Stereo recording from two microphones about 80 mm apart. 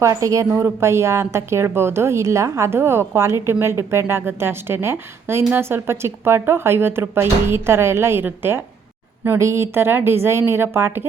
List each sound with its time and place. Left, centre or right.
0.0 s speech: right